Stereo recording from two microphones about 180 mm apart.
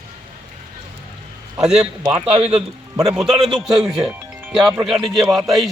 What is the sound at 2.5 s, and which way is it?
A man's voice, 5° right (ahead or behind).